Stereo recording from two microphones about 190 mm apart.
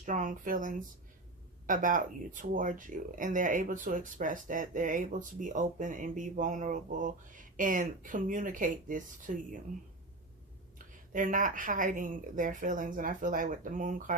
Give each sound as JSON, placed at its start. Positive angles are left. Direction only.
{"t": 0.0, "sound": "speech", "side_deg": -40}
{"t": 11.1, "sound": "speech", "side_deg": -45}